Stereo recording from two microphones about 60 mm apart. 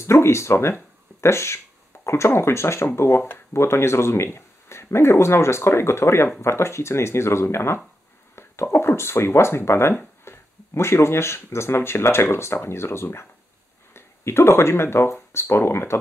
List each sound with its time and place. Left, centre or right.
0.0 s speech: left